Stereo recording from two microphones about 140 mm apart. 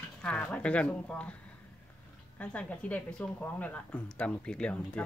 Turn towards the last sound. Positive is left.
turn(degrees=5)  # may be behind; listen again after turning